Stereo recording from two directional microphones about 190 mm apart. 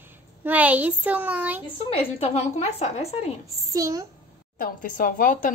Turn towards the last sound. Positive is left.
turn(degrees=45)  # may be behind; listen again after turning